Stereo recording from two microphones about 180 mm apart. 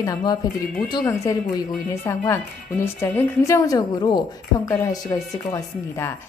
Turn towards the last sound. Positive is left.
turn(degrees=15)  # may be behind; listen again after turning